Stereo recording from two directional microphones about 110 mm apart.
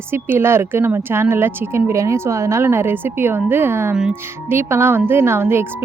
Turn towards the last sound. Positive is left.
turn(degrees=-20)  # may be behind; listen again after turning